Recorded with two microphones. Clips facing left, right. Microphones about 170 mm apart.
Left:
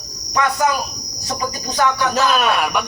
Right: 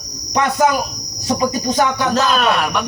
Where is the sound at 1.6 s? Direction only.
20° right (ahead or behind).